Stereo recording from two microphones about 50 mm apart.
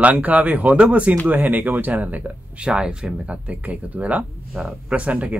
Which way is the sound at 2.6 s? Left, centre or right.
Centre.